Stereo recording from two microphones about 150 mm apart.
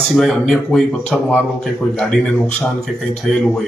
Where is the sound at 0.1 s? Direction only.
Centre (ahead or behind).